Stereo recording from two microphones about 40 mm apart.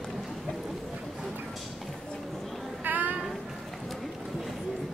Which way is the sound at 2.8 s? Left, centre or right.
Right.